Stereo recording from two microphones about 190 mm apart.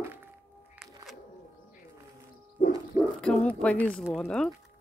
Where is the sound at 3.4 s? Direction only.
5° left (ahead or behind).